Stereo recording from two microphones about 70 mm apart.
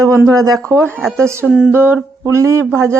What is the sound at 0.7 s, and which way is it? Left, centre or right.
Speech, right.